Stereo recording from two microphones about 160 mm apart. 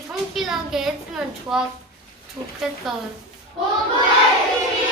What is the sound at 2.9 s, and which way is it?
Speech, centre (ahead or behind).